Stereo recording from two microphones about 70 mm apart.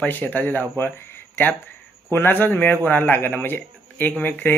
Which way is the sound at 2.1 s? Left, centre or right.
Left.